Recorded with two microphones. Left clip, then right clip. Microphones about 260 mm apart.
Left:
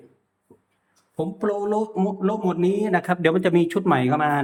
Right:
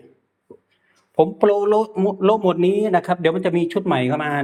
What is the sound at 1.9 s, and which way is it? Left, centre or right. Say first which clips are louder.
Speech: right 7 dB; centre.